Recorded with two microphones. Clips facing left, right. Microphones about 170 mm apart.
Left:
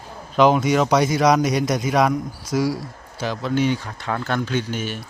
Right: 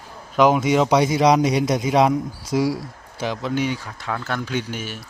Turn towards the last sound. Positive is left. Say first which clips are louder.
# left 2 dB
turn(degrees=-5)  # may be behind; listen again after turning